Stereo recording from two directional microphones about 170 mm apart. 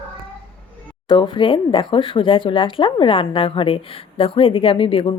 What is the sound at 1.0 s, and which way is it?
Speech, 30° left (ahead or behind).